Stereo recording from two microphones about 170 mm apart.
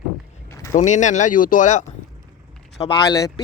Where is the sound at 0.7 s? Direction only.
45° left (ahead or behind).